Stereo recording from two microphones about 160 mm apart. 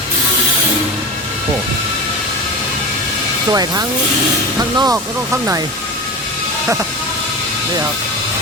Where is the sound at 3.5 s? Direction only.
25° right (ahead or behind).